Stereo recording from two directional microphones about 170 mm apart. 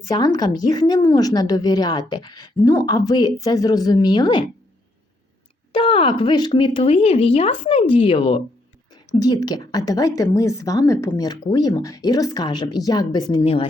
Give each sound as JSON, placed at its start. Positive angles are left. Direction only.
{"t": 0.1, "sound": "a woman's voice", "side_deg": 25}
{"t": 5.7, "sound": "speech", "side_deg": 30}
{"t": 9.1, "sound": "a woman's voice", "side_deg": 20}